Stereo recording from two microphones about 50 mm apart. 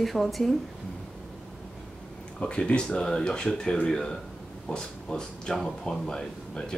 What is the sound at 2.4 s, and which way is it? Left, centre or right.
Speech, centre.